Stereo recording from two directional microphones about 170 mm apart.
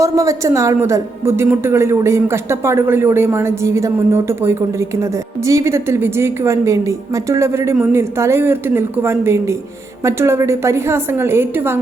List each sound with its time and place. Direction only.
0.0 s a woman's voice: 20° right (ahead or behind)